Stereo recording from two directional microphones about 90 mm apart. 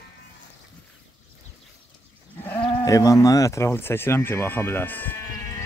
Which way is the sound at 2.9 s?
40° left (ahead or behind).